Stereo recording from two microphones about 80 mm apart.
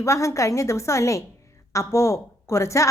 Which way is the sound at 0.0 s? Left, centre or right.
Left.